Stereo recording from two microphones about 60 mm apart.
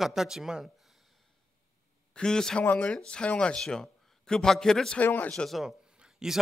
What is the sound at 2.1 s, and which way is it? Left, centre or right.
Speech, centre.